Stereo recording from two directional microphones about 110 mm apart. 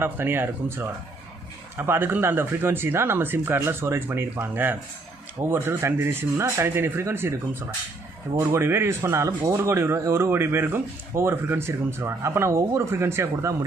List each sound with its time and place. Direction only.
0.0 s speech: 20° right (ahead or behind)
8.4 s speech: 25° right (ahead or behind)